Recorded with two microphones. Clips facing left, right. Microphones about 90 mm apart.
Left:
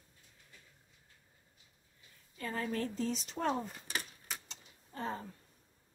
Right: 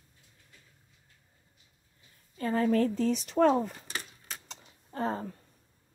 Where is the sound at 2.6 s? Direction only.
55° right (ahead or behind); by 3.7 s 90° right.